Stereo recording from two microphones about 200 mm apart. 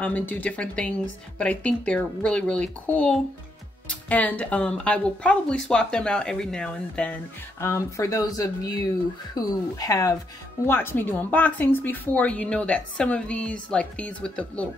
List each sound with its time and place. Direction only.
0.0 s speech: 10° left (ahead or behind)
7.6 s speech: 15° left (ahead or behind)